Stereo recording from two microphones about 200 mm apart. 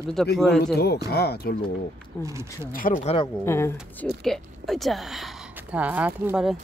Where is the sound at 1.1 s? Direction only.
55° left (ahead or behind).